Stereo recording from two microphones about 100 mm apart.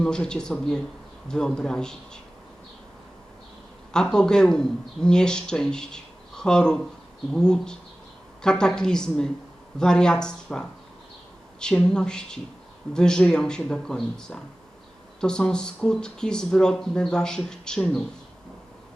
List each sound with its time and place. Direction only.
0.0 s speech: 10° left (ahead or behind)
3.9 s speech: 5° left (ahead or behind)